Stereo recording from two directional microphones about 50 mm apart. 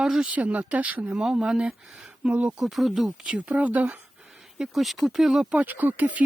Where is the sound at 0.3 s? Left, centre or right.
Right.